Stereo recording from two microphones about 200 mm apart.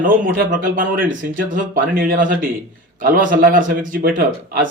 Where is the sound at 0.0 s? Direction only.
40° right (ahead or behind).